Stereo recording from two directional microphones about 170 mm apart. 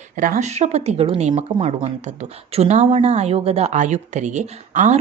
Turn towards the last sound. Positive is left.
turn(degrees=-45)  # may be behind; listen again after turning